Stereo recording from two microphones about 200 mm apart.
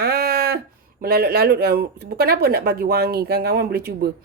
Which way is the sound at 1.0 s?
50° right (ahead or behind).